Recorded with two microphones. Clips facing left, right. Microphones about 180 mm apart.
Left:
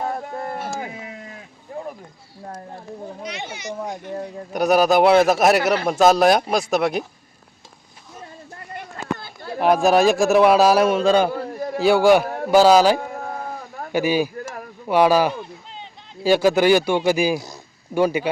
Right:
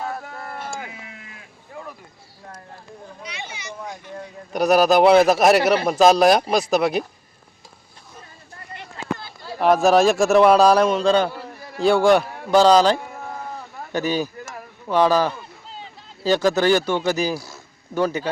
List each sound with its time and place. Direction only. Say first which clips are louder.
0.0 s a sound: left 4 dB; 25° left (ahead or behind)
0.5 s sheep: left 4 dB; 30° left (ahead or behind)
3.2 s a child's voice: left 4 dB; 55° left (ahead or behind)
4.5 s a man's voice: even; centre (ahead or behind)
8.7 s run: left 1 dB; 50° left (ahead or behind)
9.6 s a man's voice: even; centre (ahead or behind)
12.2 s a sound: left 9 dB; 50° left (ahead or behind)
12.5 s a sound: left 1 dB; 5° left (ahead or behind)
16.2 s speech: left 2 dB; 10° left (ahead or behind)